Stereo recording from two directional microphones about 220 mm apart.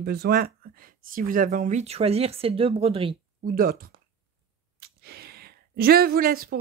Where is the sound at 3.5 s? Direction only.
40° right (ahead or behind).